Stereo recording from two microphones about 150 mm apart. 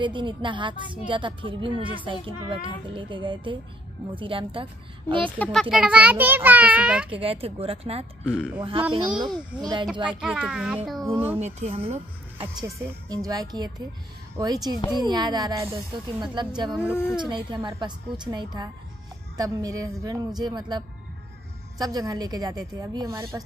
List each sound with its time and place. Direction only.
0.0 s a woman's voice: 30° right (ahead or behind)
5.2 s a child's voice: 5° left (ahead or behind)
7.1 s a woman's voice: 40° right (ahead or behind)
9.3 s a child's voice: centre (ahead or behind)
11.3 s speech: 45° right (ahead or behind)
12.6 s speech: 20° right (ahead or behind)